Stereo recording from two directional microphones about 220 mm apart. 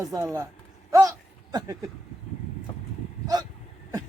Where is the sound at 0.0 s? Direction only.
15° right (ahead or behind).